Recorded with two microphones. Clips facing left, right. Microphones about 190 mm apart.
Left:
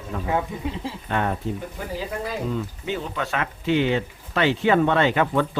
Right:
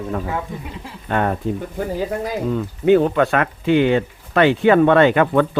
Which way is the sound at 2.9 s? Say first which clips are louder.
Right 16 dB; 60° right (ahead or behind).